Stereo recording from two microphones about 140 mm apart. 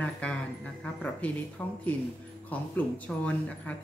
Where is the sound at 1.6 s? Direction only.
15° left (ahead or behind).